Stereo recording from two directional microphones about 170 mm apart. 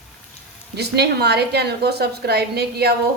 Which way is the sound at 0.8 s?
75° right (ahead or behind).